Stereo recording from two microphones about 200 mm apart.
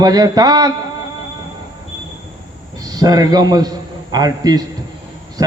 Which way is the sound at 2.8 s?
20° right (ahead or behind).